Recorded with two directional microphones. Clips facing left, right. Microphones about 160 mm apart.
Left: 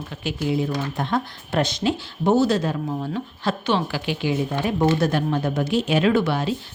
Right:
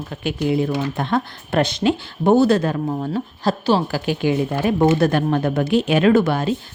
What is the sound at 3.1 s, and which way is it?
Speech, 35° right (ahead or behind).